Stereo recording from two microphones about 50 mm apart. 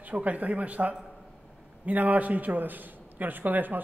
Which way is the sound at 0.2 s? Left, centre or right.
Right.